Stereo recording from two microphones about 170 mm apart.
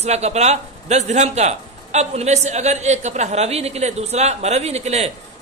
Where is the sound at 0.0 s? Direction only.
40° right (ahead or behind).